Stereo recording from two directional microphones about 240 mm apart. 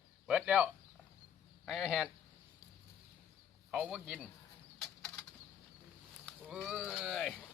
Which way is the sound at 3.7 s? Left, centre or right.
Centre.